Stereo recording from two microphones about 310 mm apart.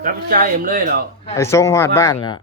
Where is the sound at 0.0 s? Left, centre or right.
Right.